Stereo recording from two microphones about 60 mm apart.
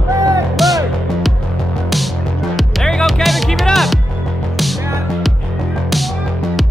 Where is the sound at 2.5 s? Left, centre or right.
Centre.